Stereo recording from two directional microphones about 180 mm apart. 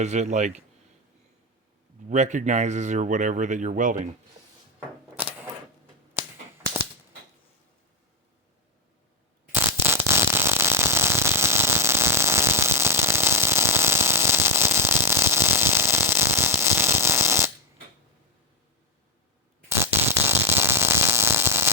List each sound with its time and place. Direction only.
0.0 s speech: 40° right (ahead or behind)
2.0 s speech: 40° right (ahead or behind)
5.2 s camera: 10° right (ahead or behind)
6.2 s typewriter: 10° right (ahead or behind)
9.5 s a sound: 15° right (ahead or behind)
19.6 s a sound: 15° right (ahead or behind)